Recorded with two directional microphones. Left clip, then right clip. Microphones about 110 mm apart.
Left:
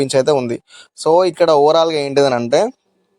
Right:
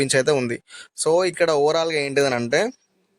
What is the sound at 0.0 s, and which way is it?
Speech, 20° left (ahead or behind).